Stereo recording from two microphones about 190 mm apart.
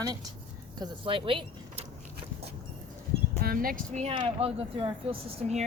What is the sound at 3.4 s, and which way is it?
Speech, 50° right (ahead or behind).